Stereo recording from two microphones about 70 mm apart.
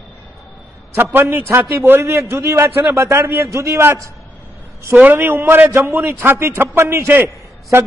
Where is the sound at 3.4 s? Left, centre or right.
Right.